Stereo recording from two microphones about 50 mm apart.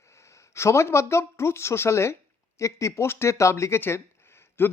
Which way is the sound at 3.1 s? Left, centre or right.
Left.